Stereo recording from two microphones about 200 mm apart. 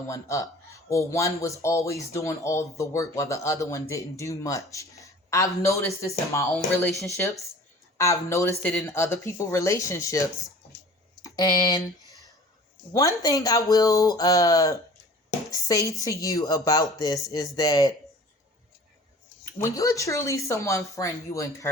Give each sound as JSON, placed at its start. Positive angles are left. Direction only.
{"t": 0.1, "sound": "speech", "side_deg": 15}
{"t": 4.7, "sound": "a sound", "side_deg": 15}
{"t": 5.6, "sound": "speech", "side_deg": 15}
{"t": 19.5, "sound": "speech", "side_deg": 15}